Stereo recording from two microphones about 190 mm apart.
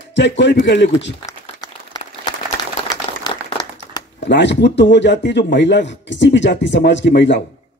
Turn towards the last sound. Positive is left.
turn(degrees=70)  # may be behind; listen again after turning